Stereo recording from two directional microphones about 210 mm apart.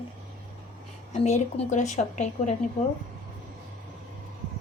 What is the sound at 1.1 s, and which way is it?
Speech, 35° left (ahead or behind).